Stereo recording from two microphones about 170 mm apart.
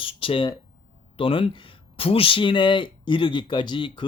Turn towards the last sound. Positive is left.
turn(degrees=30)  # may be behind; listen again after turning